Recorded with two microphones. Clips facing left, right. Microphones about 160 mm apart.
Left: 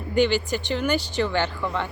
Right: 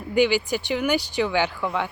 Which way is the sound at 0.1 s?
10° right (ahead or behind).